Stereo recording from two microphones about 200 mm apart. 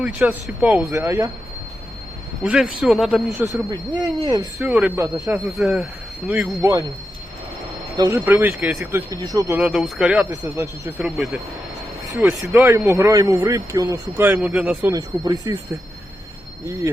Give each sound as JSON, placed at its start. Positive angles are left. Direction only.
{"t": 0.0, "sound": "speech", "side_deg": -10}
{"t": 2.4, "sound": "speech", "side_deg": 0}
{"t": 3.7, "sound": "speech", "side_deg": -20}
{"t": 7.9, "sound": "speech", "side_deg": -20}
{"t": 9.6, "sound": "speech", "side_deg": -5}
{"t": 10.2, "sound": "speech", "side_deg": -15}
{"t": 11.0, "sound": "speech", "side_deg": 0}
{"t": 12.1, "sound": "speech", "side_deg": -10}